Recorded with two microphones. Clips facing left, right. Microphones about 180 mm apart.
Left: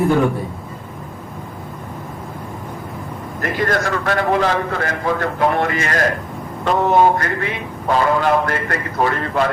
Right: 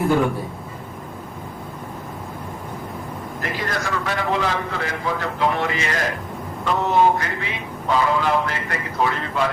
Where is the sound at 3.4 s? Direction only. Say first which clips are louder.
Left 8 dB; 55° left (ahead or behind).